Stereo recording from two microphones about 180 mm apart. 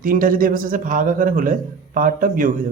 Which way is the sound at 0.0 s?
50° right (ahead or behind).